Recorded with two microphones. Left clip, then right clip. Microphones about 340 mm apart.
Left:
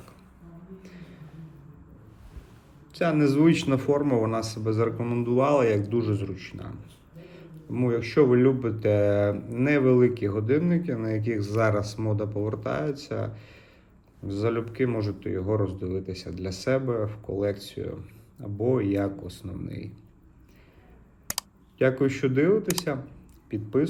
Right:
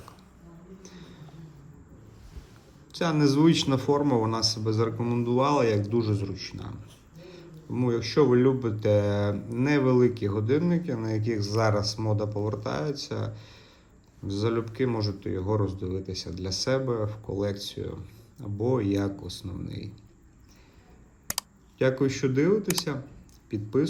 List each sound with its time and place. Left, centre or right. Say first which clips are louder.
0.8 s a sound: even; centre
2.9 s a man's voice: left 1 dB; centre
21.2 s speech: even; centre